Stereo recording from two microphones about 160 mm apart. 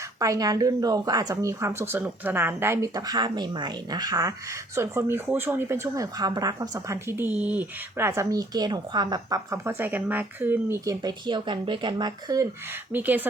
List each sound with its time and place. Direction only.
0.2 s speech: 20° right (ahead or behind)
12.9 s speech: 10° right (ahead or behind)